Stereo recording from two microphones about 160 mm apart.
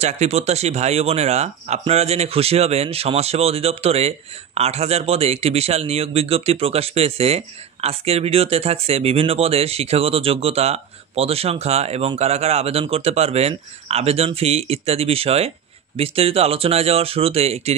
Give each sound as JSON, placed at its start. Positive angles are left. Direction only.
{"t": 0.0, "sound": "a man's voice", "side_deg": -40}